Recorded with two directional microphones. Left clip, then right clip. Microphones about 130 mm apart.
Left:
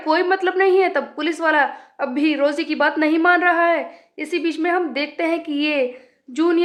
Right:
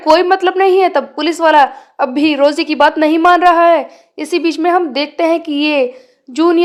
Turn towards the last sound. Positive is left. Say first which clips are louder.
# right 7 dB
turn(degrees=-30)  # may be behind; listen again after turning